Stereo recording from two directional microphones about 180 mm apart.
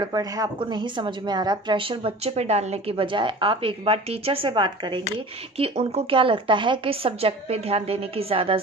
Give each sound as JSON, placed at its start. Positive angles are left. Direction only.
{"t": 0.0, "sound": "a woman's voice", "side_deg": -20}